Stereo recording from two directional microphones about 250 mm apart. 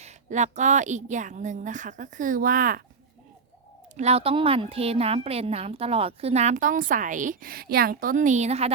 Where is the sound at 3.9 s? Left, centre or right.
Right.